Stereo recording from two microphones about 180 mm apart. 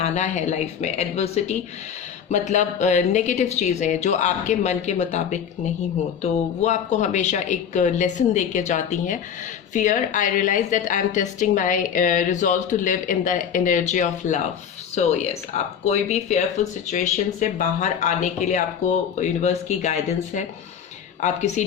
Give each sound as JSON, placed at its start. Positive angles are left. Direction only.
{"t": 0.0, "sound": "a woman's voice", "side_deg": 40}